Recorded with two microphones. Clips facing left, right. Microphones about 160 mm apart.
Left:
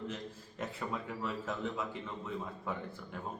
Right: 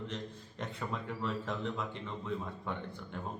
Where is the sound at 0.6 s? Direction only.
5° left (ahead or behind).